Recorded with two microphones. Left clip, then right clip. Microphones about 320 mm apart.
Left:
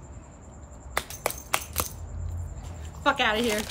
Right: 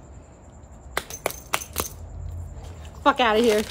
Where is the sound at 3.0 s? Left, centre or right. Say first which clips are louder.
Right 5 dB; centre.